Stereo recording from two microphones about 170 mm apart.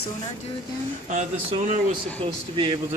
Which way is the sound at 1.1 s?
45° right (ahead or behind).